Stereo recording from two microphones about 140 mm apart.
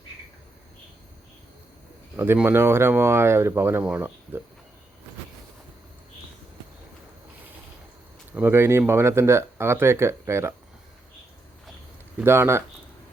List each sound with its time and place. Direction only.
2.1 s speech: 15° right (ahead or behind)
8.4 s speech: 15° right (ahead or behind)
12.2 s speech: 15° right (ahead or behind)